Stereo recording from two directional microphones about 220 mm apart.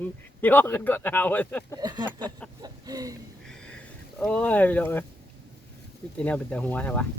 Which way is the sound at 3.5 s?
5° left (ahead or behind).